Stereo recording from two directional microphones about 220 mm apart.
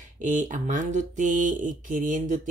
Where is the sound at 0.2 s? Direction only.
35° right (ahead or behind).